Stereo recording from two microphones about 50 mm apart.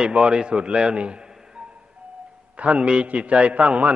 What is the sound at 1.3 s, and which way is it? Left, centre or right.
Music, centre.